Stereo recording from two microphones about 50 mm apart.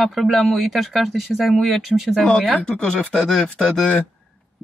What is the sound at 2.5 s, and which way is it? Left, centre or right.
Speech, centre.